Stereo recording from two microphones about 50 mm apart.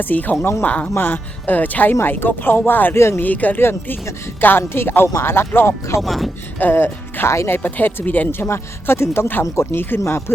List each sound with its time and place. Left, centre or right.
0.0 s speech: left
0.9 s speech: left
2.9 s speech: left
3.2 s speech: left
3.6 s speech: left
6.0 s speech: centre
6.6 s speech: left
7.6 s speech: left
8.3 s speech: left
10.0 s speech: left